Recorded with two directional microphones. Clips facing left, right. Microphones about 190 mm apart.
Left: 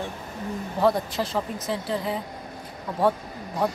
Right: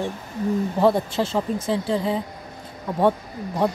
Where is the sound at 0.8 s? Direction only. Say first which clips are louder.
Right 2 dB; 25° right (ahead or behind).